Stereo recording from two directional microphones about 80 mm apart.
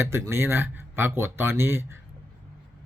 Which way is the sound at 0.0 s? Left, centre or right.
Right.